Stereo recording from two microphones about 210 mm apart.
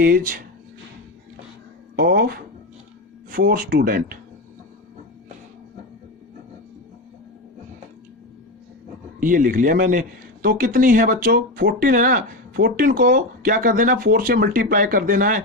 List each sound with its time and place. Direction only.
0.0 s speech: 45° right (ahead or behind)
2.0 s speech: 45° right (ahead or behind)
9.2 s a man's voice: 40° right (ahead or behind)